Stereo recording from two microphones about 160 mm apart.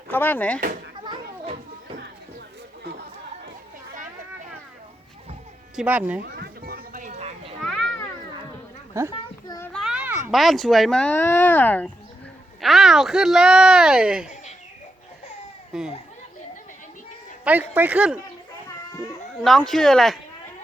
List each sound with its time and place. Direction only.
0.1 s speech: 10° left (ahead or behind)
5.7 s speech: 10° right (ahead or behind)
6.2 s a sound: 70° right (ahead or behind)
7.2 s children playing: 40° right (ahead or behind)
8.9 s speech: 15° right (ahead or behind)
9.5 s a sound: 15° left (ahead or behind)
9.7 s a child's voice: 5° right (ahead or behind)
12.6 s speech: centre (ahead or behind)
15.7 s speech: 5° right (ahead or behind)
17.4 s speech: 10° right (ahead or behind)
19.4 s speech: centre (ahead or behind)